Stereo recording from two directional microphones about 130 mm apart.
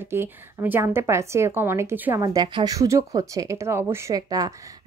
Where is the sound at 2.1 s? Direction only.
30° right (ahead or behind).